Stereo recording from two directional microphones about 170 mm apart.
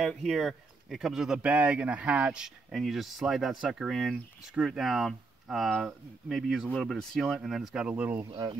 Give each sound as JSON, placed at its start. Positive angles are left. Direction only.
{"t": 0.0, "sound": "speech", "side_deg": 0}
{"t": 8.3, "sound": "speech", "side_deg": -25}